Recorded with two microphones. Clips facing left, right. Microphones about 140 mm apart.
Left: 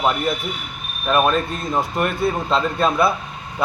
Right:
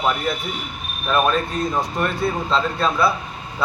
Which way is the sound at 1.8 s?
5° left (ahead or behind).